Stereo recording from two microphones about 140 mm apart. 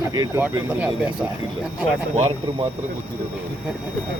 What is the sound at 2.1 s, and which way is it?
Speech, 40° right (ahead or behind).